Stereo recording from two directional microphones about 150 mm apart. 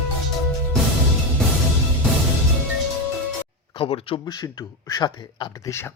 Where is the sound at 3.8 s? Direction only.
40° left (ahead or behind).